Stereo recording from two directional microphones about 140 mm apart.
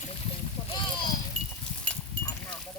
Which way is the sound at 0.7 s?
35° left (ahead or behind).